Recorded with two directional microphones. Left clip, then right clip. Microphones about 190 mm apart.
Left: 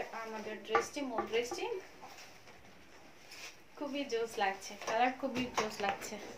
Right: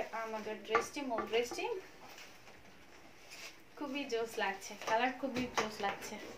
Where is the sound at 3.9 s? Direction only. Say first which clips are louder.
Left 1 dB; 5° right (ahead or behind).